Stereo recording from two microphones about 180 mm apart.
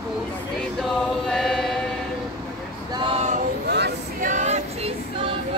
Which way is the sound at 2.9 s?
30° right (ahead or behind).